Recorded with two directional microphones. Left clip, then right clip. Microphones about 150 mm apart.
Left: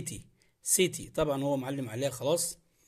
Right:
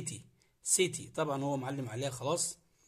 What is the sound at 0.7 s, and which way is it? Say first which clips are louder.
A man's voice: left 3 dB; 25° left (ahead or behind).